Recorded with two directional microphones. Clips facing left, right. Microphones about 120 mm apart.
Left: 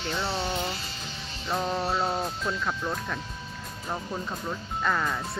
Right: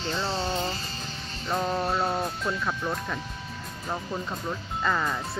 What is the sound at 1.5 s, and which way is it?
Speech, centre (ahead or behind).